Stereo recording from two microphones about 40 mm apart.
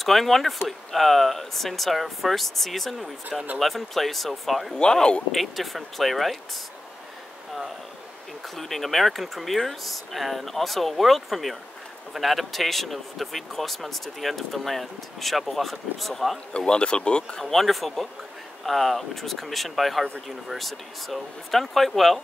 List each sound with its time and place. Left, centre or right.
0.0 s speech: centre
4.9 s speech: left
5.3 s speech: centre
8.5 s speech: centre
16.5 s speech: left
17.4 s speech: centre